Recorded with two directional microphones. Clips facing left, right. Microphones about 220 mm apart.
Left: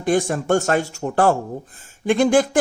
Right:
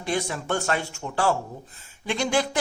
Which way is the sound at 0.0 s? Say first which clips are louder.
Left 8 dB; 50° left (ahead or behind).